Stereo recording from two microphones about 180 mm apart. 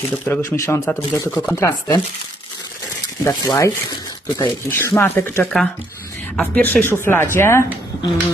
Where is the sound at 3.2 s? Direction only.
15° left (ahead or behind).